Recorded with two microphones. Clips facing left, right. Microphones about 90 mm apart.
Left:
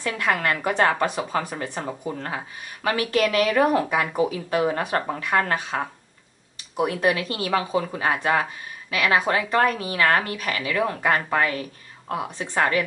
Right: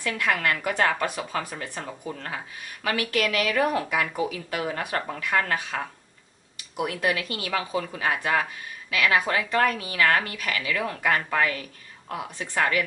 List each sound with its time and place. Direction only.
0.2 s speech: 30° left (ahead or behind)